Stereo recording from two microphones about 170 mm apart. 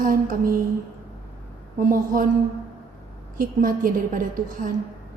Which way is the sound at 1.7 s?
55° right (ahead or behind).